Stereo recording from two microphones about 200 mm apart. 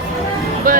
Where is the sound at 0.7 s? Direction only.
45° right (ahead or behind).